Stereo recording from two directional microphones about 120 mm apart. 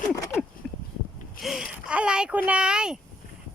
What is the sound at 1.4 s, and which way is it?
Speech, 5° right (ahead or behind).